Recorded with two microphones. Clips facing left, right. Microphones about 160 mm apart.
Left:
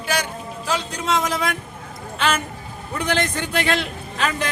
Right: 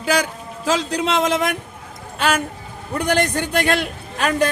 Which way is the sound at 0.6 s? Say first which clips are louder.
Right 5 dB; 80° right.